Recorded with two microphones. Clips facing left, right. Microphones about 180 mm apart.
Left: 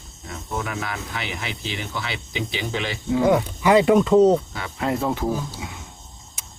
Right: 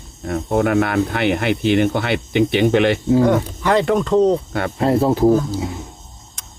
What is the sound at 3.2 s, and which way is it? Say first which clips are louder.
Speech: right 3 dB; 5° left (ahead or behind).